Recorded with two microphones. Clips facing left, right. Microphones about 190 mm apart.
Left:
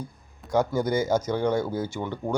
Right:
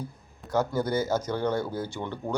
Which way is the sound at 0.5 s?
10° left (ahead or behind).